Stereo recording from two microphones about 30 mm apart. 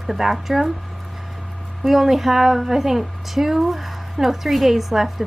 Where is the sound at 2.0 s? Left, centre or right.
Centre.